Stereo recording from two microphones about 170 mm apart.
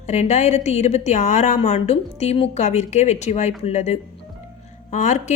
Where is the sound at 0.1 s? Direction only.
40° left (ahead or behind).